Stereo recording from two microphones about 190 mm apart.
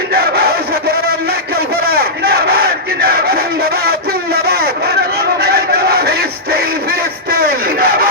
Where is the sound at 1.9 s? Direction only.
55° right (ahead or behind).